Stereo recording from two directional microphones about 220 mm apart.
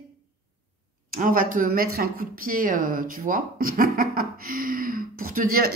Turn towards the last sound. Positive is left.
turn(degrees=-40)  # may be behind; listen again after turning